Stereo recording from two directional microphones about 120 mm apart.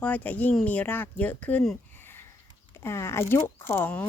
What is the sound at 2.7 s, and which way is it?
Speech, 20° left (ahead or behind).